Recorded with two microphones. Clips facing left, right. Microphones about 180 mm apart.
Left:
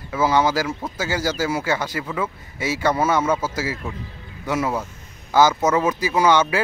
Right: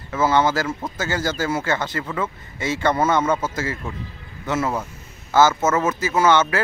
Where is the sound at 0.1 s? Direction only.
10° left (ahead or behind).